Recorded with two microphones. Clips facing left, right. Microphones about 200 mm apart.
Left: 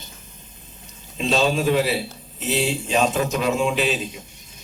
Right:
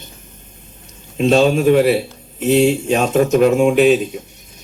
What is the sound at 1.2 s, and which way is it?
A man's voice, 50° right (ahead or behind).